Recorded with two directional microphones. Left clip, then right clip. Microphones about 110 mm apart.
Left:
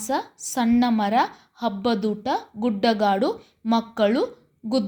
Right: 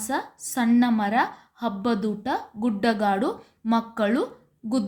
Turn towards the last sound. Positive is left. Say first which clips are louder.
# left 3 dB
turn(degrees=15)  # may be behind; listen again after turning